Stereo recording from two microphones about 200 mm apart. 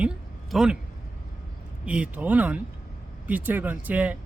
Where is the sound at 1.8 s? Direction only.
5° right (ahead or behind).